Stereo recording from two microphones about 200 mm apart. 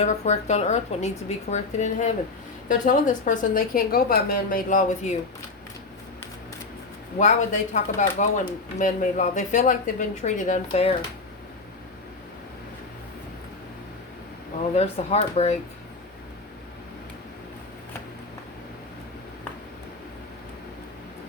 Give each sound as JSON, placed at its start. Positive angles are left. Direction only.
{"t": 0.0, "sound": "a woman's voice", "side_deg": 35}
{"t": 7.2, "sound": "speech", "side_deg": 35}
{"t": 14.8, "sound": "speech", "side_deg": 30}